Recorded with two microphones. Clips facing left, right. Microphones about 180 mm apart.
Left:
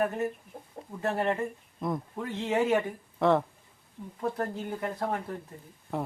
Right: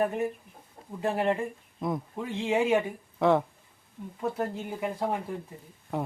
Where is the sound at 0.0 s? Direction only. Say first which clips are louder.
Right 1 dB; 15° right (ahead or behind).